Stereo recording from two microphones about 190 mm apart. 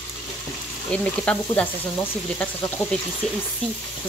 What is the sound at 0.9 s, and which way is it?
Speech, 5° left (ahead or behind).